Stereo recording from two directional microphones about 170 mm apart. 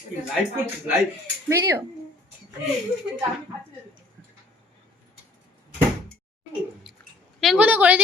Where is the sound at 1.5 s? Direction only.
15° right (ahead or behind).